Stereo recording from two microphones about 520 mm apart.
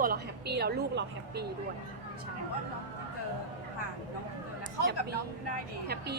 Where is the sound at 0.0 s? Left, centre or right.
Centre.